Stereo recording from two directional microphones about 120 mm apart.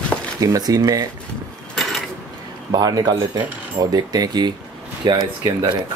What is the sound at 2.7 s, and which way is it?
Speech, 35° right (ahead or behind).